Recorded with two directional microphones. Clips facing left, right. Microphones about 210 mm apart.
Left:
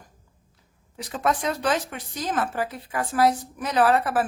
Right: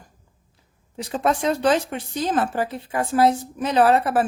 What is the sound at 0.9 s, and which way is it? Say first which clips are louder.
Speech: right 3 dB; 25° right (ahead or behind).